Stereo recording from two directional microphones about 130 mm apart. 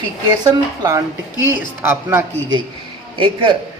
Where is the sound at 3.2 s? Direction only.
40° right (ahead or behind).